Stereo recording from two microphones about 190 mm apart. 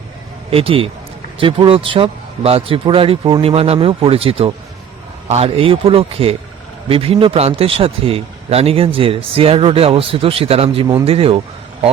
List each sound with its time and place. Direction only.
0.5 s a man's voice: 30° right (ahead or behind)